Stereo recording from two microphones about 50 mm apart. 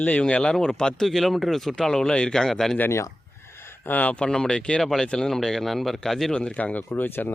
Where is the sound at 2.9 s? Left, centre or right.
Left.